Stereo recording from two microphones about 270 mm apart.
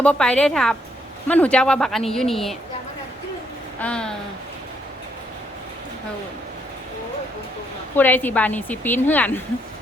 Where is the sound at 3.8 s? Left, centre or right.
Centre.